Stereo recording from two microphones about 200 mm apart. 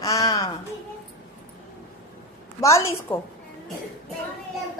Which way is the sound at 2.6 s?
15° left (ahead or behind).